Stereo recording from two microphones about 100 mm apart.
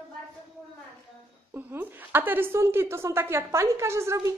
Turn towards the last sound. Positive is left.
turn(degrees=-30)  # may be behind; listen again after turning